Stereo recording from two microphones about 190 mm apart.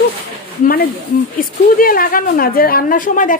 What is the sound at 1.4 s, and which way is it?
A woman's voice, 50° left (ahead or behind).